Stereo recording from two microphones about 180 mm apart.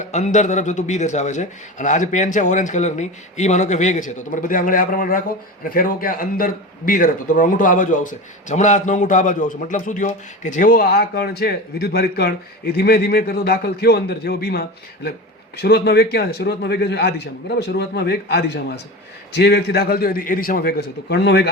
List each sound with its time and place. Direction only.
0.0 s a man's voice: 40° left (ahead or behind); by 21.5 s 65° left (ahead or behind)